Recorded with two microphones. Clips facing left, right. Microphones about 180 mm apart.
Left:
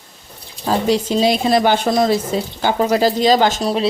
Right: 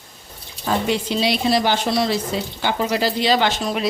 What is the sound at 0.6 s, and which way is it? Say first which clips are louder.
A woman's voice: left 4 dB; 35° left (ahead or behind).